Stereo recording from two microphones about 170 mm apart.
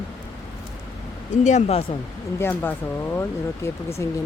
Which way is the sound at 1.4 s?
45° left (ahead or behind).